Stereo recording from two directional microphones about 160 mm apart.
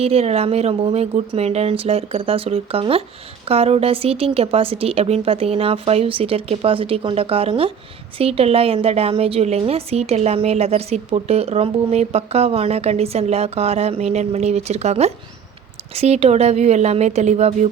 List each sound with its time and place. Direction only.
0.0 s a woman's voice: 40° right (ahead or behind)